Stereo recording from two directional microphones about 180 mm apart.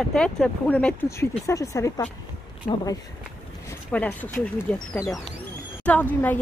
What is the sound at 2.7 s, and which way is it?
Speech, 45° left (ahead or behind).